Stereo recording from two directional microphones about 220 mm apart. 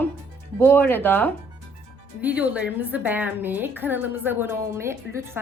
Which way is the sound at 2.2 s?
5° right (ahead or behind).